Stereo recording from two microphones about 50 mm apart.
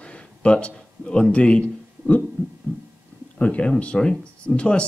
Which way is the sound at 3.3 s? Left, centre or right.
Left.